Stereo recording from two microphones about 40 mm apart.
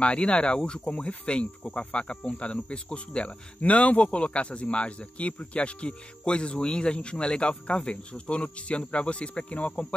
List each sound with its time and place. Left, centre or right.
0.0 s cricket: left